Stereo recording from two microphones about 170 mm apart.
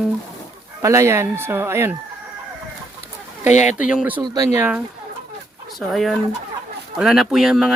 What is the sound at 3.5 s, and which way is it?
Speech, 45° left (ahead or behind).